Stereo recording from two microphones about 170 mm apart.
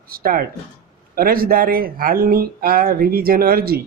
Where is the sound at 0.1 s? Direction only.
60° right (ahead or behind).